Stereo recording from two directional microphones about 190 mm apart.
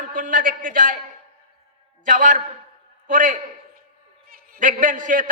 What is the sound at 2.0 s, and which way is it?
A man's voice, 45° right (ahead or behind).